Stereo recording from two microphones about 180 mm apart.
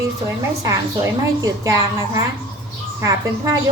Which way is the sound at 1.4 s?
20° right (ahead or behind).